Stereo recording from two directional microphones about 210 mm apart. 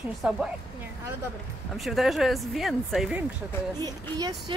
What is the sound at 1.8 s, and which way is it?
Speech, centre (ahead or behind).